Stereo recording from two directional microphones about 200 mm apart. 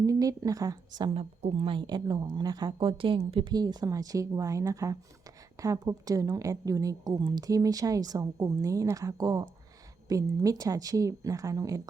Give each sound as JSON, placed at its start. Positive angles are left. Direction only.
{"t": 0.0, "sound": "a woman's voice", "side_deg": -15}